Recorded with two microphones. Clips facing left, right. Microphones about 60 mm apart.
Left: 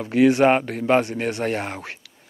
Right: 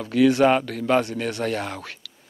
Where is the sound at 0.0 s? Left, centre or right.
Left.